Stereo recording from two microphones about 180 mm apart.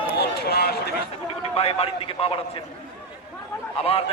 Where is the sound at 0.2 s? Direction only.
65° left (ahead or behind).